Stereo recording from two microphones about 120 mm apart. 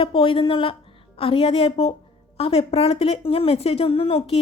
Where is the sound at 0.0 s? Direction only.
45° left (ahead or behind).